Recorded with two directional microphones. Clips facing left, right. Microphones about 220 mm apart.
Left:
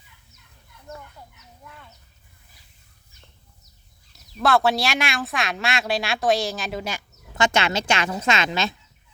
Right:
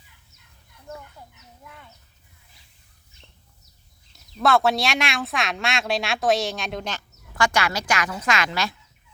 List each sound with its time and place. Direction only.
4.4 s speech: centre (ahead or behind)
7.3 s speech: 25° left (ahead or behind)